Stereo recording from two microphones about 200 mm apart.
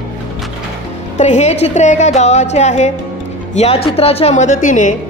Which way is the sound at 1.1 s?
35° left (ahead or behind).